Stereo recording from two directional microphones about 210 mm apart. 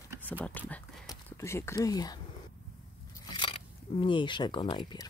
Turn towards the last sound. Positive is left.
turn(degrees=20)  # may be behind; listen again after turning